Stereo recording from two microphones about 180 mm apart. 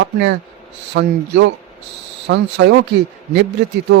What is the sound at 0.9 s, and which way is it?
A man's voice, 90° right.